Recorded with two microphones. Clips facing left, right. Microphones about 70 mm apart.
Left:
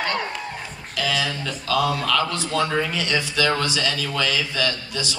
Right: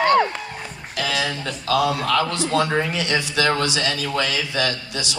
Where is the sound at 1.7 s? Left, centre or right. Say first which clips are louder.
Right 2 dB; right.